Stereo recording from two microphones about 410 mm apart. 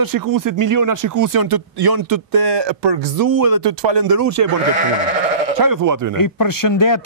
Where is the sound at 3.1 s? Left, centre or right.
Right.